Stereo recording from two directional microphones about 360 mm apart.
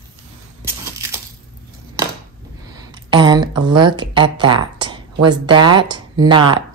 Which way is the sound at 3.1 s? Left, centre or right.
Centre.